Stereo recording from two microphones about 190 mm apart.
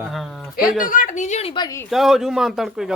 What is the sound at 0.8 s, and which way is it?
Speech, 45° left (ahead or behind).